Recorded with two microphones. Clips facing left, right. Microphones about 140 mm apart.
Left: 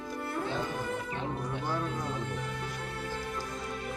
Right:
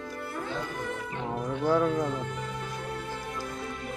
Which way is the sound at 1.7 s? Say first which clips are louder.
Right 11 dB; 90° right.